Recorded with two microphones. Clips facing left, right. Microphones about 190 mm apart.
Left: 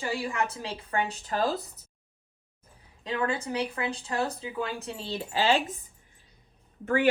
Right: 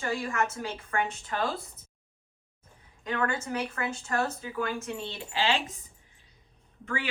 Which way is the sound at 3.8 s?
20° left (ahead or behind).